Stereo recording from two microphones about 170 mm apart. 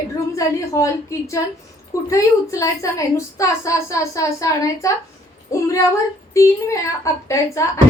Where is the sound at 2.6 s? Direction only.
20° left (ahead or behind).